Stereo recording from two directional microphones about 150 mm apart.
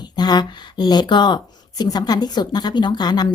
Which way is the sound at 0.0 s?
30° left (ahead or behind).